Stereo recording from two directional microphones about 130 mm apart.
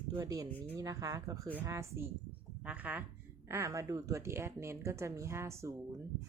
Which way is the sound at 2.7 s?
10° right (ahead or behind).